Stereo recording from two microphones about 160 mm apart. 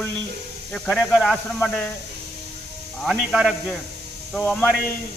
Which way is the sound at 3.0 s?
Centre (ahead or behind).